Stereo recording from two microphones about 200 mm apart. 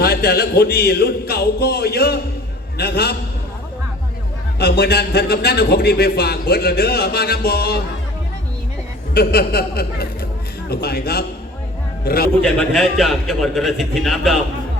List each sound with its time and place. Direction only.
0.0 s a man's voice: 50° left (ahead or behind)
4.6 s a man's voice: 55° left (ahead or behind)
9.1 s a man's voice: 50° left (ahead or behind)
12.5 s a man's voice: centre (ahead or behind)